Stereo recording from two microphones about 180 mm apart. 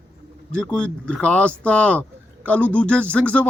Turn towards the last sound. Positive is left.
turn(degrees=5)  # may be behind; listen again after turning